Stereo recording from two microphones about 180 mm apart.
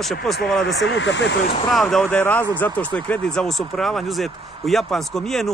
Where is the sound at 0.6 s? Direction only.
90° left.